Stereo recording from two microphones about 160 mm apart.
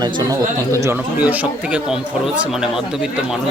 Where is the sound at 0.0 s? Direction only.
25° right (ahead or behind).